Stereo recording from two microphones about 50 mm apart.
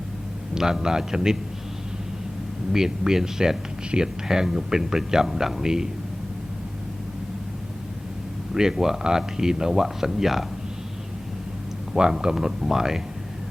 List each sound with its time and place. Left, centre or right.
0.5 s speech: centre
2.7 s speech: centre
8.5 s speech: centre
11.9 s speech: centre